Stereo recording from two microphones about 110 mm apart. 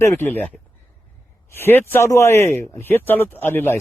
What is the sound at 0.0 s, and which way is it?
Speech, 25° left (ahead or behind).